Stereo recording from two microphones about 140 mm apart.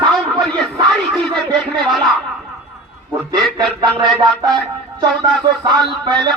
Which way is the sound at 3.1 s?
30° right (ahead or behind).